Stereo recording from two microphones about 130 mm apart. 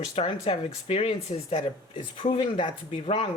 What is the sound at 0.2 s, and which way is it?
A woman's voice, 50° left (ahead or behind).